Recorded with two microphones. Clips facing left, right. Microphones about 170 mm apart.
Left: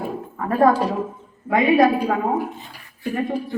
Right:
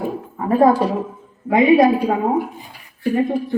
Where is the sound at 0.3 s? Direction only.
20° right (ahead or behind).